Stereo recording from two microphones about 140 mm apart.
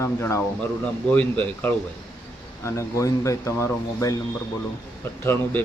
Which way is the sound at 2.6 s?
20° left (ahead or behind).